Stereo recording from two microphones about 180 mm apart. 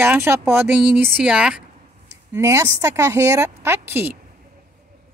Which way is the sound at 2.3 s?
15° right (ahead or behind).